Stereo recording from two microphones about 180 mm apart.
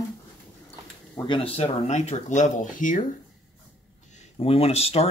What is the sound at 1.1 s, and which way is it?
Speech, 25° left (ahead or behind).